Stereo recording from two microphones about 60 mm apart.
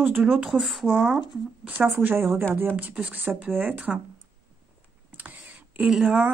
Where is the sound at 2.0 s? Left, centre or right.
Right.